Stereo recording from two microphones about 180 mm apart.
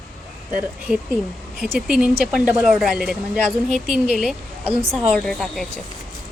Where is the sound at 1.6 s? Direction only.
5° right (ahead or behind).